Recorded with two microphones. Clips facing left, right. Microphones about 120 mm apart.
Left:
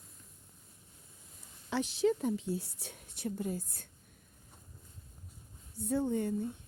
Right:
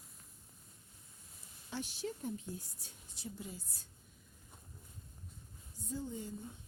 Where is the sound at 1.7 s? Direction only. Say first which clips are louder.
Left 12 dB; 90° left; by 3.9 s 50° left (ahead or behind).